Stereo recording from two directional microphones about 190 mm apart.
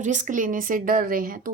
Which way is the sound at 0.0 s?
40° right (ahead or behind).